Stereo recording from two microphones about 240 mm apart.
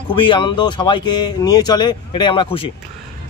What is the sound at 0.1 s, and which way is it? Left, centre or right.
A man's voice, centre.